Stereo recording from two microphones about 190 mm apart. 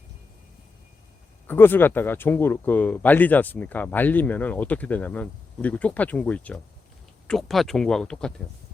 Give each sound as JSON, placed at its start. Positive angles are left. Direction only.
{"t": 1.5, "sound": "speech", "side_deg": 10}